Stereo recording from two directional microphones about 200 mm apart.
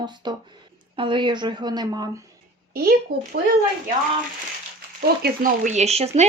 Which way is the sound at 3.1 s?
50° right (ahead or behind).